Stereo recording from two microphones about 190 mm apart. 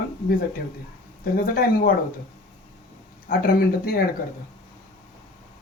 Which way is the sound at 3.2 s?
55° left (ahead or behind).